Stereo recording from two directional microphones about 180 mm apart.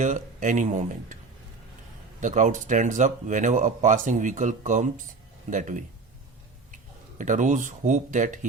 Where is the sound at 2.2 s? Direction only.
45° right (ahead or behind).